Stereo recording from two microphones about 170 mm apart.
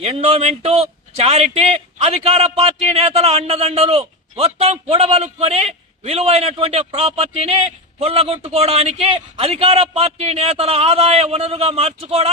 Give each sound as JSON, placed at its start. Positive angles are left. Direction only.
{"t": 0.0, "sound": "a man's voice", "side_deg": -35}